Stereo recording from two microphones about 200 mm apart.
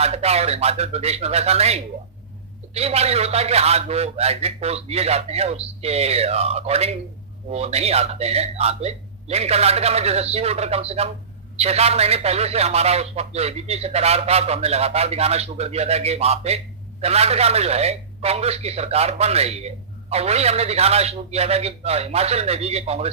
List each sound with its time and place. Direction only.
0.0 s speech: 30° right (ahead or behind)